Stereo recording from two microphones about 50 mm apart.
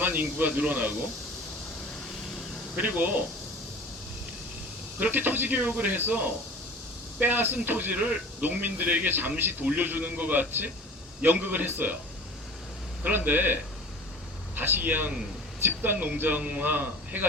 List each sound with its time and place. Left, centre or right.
0.0 s speech: right
2.7 s speech: right
4.9 s speech: right
7.9 s speech: right
13.1 s speech: right